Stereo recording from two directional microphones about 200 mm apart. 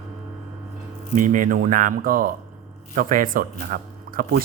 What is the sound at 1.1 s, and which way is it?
Speech, 40° right (ahead or behind).